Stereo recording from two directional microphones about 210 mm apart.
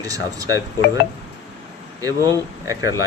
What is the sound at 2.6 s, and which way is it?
Speech, 15° right (ahead or behind).